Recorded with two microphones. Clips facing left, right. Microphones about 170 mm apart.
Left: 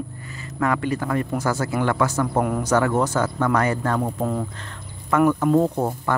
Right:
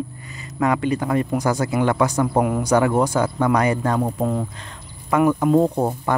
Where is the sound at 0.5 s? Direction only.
20° right (ahead or behind).